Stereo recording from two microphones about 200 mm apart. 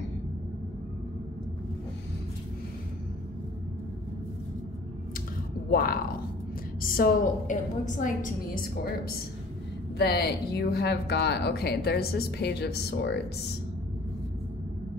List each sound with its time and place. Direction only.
5.7 s a woman's voice: 50° left (ahead or behind)
9.9 s speech: 50° left (ahead or behind)